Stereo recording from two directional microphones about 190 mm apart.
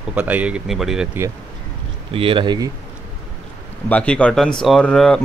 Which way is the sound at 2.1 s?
30° right (ahead or behind).